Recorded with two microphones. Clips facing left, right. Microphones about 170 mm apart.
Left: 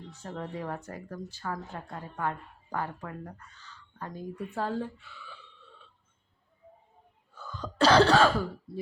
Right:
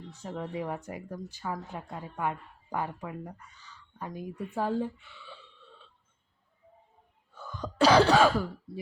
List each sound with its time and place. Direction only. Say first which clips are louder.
0.1 s speech: right 2 dB; 10° right (ahead or behind)
5.1 s a sound: even; 25° right (ahead or behind)
7.3 s cough: right 1 dB; 20° right (ahead or behind)